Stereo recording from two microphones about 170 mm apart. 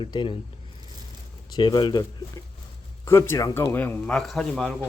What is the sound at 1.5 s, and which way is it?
Speech, 25° left (ahead or behind).